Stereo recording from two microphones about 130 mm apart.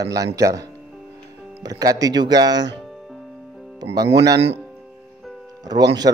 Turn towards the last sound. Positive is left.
turn(degrees=-30)  # may be behind; listen again after turning